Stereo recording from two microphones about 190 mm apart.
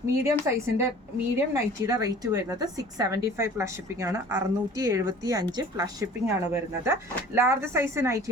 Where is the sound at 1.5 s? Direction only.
20° right (ahead or behind).